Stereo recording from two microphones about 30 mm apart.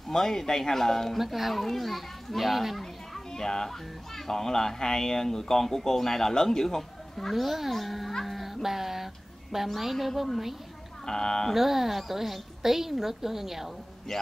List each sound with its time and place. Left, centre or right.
0.1 s speech: centre
1.1 s a child's voice: centre
3.3 s speech: centre
7.3 s a child's voice: centre
8.3 s music: centre
8.6 s a woman's voice: centre
11.1 s speech: centre
11.5 s a woman's voice: centre